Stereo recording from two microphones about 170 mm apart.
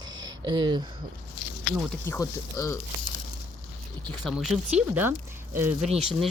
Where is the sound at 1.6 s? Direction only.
15° left (ahead or behind).